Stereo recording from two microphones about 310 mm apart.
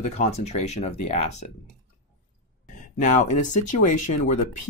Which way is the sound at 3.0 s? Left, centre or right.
Left.